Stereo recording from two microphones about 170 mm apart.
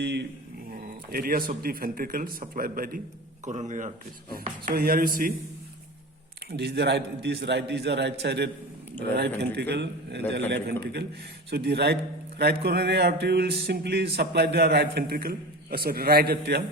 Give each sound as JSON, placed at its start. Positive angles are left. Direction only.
{"t": 0.0, "sound": "mantra", "side_deg": -90}
{"t": 0.7, "sound": "speech", "side_deg": -60}
{"t": 3.4, "sound": "speech", "side_deg": -45}
{"t": 4.6, "sound": "speech", "side_deg": -60}
{"t": 6.5, "sound": "a man's voice", "side_deg": -75}